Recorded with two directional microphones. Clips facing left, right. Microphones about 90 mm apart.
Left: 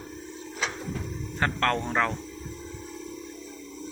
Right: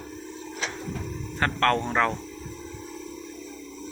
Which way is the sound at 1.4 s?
10° left (ahead or behind).